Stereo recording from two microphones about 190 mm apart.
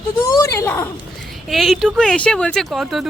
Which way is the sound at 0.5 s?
15° left (ahead or behind).